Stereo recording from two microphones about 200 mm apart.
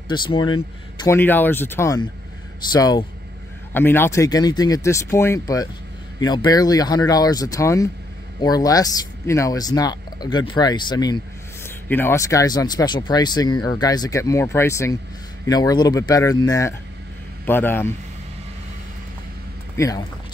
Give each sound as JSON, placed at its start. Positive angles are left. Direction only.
{"t": 0.1, "sound": "speech", "side_deg": 20}
{"t": 1.0, "sound": "speech", "side_deg": 10}